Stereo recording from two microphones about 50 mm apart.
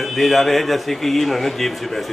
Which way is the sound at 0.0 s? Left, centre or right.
Centre.